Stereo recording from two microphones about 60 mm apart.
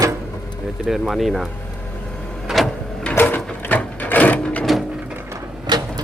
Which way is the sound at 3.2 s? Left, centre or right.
Left.